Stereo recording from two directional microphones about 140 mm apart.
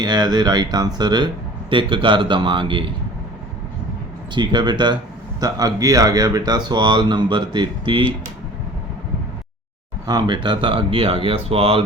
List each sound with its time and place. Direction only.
0.0 s speech: 30° right (ahead or behind)
4.4 s speech: 30° right (ahead or behind)
10.1 s speech: 30° right (ahead or behind)